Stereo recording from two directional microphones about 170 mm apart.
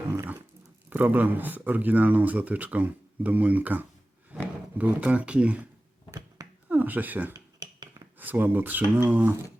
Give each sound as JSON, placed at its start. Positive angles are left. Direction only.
{"t": 0.1, "sound": "dog", "side_deg": -15}
{"t": 0.9, "sound": "speech", "side_deg": -10}
{"t": 6.7, "sound": "speech", "side_deg": -10}
{"t": 7.6, "sound": "cutlery", "side_deg": -25}
{"t": 8.2, "sound": "speech", "side_deg": -10}